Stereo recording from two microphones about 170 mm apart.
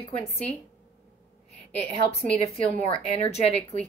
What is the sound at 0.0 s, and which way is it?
Speech, 35° left (ahead or behind).